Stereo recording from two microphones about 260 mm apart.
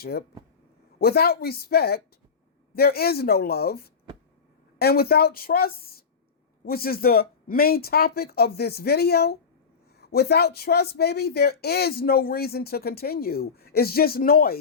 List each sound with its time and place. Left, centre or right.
0.0 s speech: left